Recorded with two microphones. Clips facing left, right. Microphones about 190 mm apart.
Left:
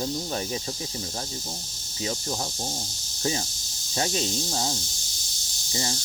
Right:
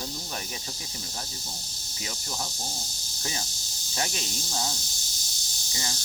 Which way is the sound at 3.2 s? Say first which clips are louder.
Left 8 dB; 30° left (ahead or behind).